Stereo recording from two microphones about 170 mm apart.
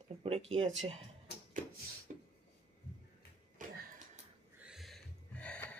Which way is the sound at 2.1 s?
45° right (ahead or behind).